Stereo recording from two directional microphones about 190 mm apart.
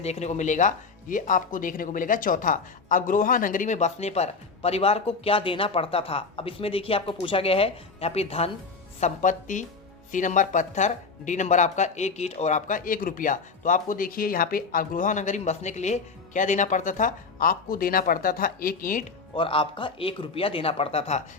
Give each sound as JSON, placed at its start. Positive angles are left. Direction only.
{"t": 0.0, "sound": "speech", "side_deg": 35}
{"t": 19.4, "sound": "speech", "side_deg": 25}